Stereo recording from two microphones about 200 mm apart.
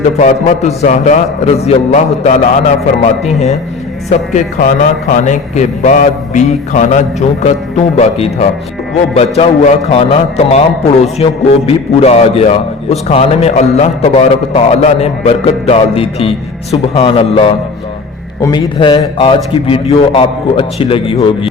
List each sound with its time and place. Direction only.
0.2 s a man's voice: 35° left (ahead or behind)
4.1 s a man's voice: 40° left (ahead or behind)